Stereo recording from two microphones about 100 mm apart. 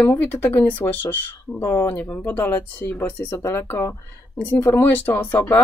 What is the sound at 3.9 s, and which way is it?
Speech, 20° left (ahead or behind).